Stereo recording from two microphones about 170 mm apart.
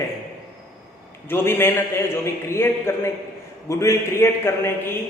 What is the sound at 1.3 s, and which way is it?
A man's voice, 15° left (ahead or behind).